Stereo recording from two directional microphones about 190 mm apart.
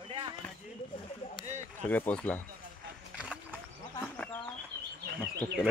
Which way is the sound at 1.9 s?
10° left (ahead or behind).